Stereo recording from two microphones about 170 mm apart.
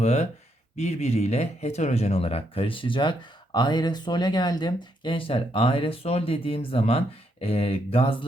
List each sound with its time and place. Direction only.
0.0 s speech: 40° left (ahead or behind)